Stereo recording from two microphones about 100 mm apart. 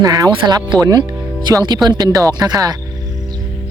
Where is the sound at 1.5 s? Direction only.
40° right (ahead or behind).